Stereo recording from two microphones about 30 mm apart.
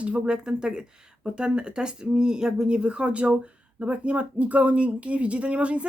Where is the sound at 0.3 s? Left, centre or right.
Right.